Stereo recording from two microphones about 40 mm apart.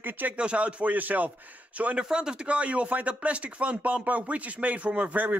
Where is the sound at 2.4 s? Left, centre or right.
Right.